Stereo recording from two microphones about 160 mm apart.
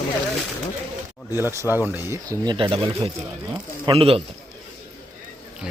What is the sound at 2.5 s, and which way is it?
Speech, 30° right (ahead or behind).